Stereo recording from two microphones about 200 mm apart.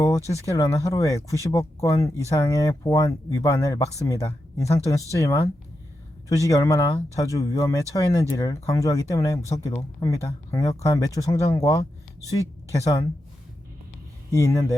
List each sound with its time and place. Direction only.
0.0 s a sound: 15° left (ahead or behind)
0.4 s speech: 15° left (ahead or behind)
14.3 s speech: 15° left (ahead or behind)